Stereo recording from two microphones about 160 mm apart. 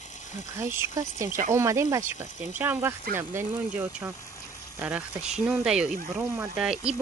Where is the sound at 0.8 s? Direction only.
20° right (ahead or behind).